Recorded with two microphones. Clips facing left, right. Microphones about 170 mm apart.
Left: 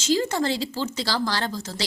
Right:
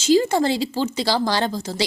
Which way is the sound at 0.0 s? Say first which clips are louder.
Right 6 dB; 10° right (ahead or behind).